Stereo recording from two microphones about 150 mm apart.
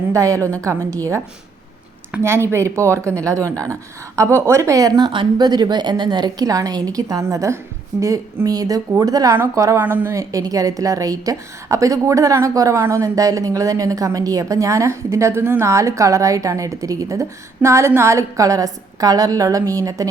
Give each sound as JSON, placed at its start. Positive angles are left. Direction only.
{"t": 0.1, "sound": "a woman's voice", "side_deg": -20}
{"t": 2.1, "sound": "a woman's voice", "side_deg": -15}